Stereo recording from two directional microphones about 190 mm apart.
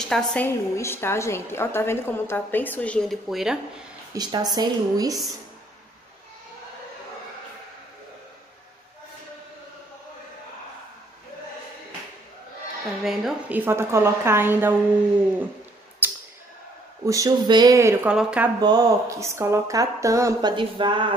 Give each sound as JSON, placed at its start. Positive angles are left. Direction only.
{"t": 0.1, "sound": "a woman's voice", "side_deg": 5}
{"t": 4.1, "sound": "a woman's voice", "side_deg": -20}
{"t": 13.0, "sound": "speech", "side_deg": -5}
{"t": 16.0, "sound": "a sound", "side_deg": -10}
{"t": 17.0, "sound": "speech", "side_deg": -15}
{"t": 18.6, "sound": "speech", "side_deg": -20}